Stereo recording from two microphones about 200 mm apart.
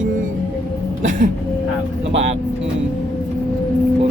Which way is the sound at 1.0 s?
40° right (ahead or behind).